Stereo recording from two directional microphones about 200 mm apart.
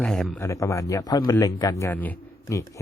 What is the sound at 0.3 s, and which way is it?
Speech, 15° left (ahead or behind).